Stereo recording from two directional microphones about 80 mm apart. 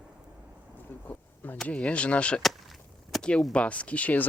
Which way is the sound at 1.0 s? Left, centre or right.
Left.